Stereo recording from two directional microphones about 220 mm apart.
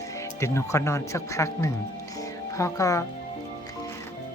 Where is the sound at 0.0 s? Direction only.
15° left (ahead or behind).